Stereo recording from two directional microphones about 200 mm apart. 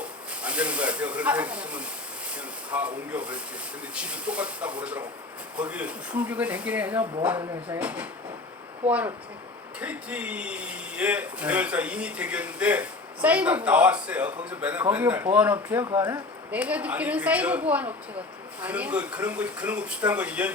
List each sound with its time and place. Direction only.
0.0 s a woman's voice: 5° right (ahead or behind)
16.0 s speech: 20° right (ahead or behind)
16.5 s a woman's voice: 5° right (ahead or behind)